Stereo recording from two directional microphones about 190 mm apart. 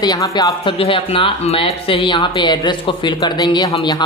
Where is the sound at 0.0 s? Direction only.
20° left (ahead or behind).